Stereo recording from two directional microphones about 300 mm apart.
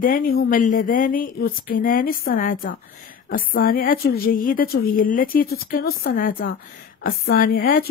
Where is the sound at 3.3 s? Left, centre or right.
Left.